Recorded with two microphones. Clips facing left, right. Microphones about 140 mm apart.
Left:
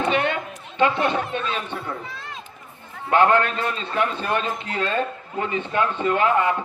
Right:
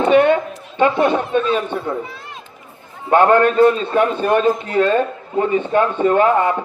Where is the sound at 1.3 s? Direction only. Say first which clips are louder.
Right 10 dB; 45° right (ahead or behind).